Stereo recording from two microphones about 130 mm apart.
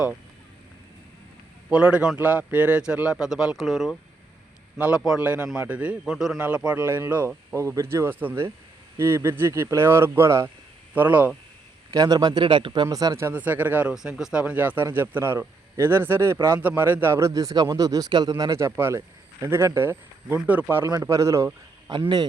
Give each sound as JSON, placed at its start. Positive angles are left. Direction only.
{"t": 1.7, "sound": "a man's voice", "side_deg": -10}
{"t": 5.0, "sound": "a man's voice", "side_deg": -10}
{"t": 11.9, "sound": "a man's voice", "side_deg": -30}
{"t": 21.9, "sound": "speech", "side_deg": -35}